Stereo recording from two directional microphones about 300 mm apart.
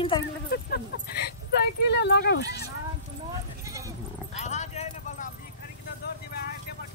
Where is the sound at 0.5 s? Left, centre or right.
Left.